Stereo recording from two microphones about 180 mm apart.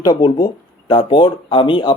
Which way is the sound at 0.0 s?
20° left (ahead or behind).